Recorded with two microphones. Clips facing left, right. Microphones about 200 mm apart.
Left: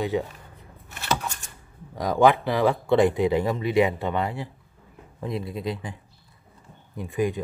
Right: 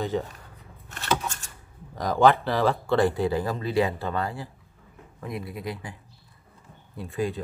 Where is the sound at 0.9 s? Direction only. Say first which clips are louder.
Right 1 dB; 15° left (ahead or behind).